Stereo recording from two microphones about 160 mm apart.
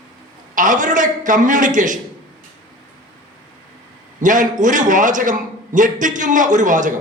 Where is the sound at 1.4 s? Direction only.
55° right (ahead or behind).